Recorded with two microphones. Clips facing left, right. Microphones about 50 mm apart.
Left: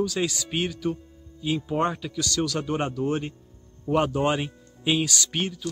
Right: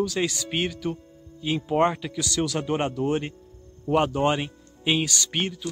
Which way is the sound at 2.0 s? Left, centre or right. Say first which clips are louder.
Even; centre.